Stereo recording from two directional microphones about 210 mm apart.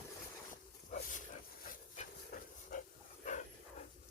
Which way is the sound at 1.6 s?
40° left (ahead or behind).